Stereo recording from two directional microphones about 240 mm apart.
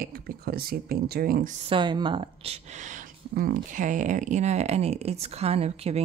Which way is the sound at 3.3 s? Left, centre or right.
Right.